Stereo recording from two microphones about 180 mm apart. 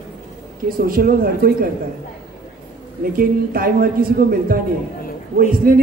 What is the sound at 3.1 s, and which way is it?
Speech, 55° right (ahead or behind).